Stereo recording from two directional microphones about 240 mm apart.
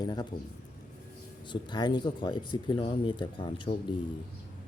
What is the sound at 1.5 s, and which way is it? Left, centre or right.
Speech, centre.